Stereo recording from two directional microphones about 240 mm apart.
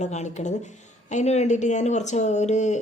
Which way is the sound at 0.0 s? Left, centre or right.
Left.